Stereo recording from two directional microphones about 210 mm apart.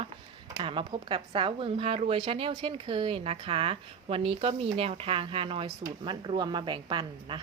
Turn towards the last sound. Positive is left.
turn(degrees=-20)  # may be behind; listen again after turning